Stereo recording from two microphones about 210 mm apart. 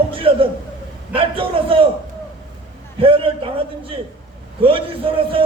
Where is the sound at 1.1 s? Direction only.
25° right (ahead or behind).